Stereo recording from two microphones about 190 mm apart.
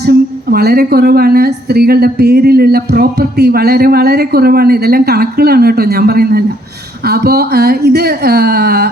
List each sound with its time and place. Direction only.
0.0 s speech: 55° right (ahead or behind)